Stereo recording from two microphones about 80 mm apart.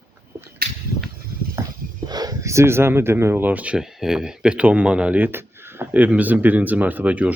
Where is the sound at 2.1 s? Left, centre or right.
Right.